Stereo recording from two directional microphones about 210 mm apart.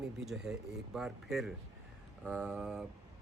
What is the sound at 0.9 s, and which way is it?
Speech, centre (ahead or behind).